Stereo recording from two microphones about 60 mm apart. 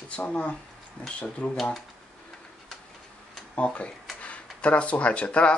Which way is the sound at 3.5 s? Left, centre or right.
Left.